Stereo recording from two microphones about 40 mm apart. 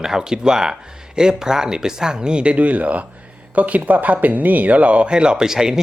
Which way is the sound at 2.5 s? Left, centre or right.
Right.